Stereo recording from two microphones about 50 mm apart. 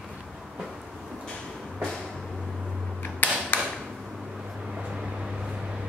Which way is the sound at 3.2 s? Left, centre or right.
Left.